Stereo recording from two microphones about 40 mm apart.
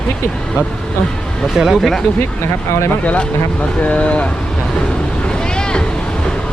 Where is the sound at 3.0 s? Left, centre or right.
Left.